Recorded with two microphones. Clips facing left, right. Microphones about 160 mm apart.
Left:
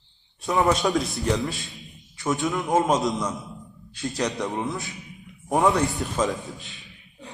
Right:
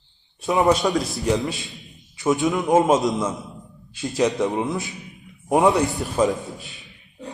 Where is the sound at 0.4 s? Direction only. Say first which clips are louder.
Right 3 dB; 20° right (ahead or behind).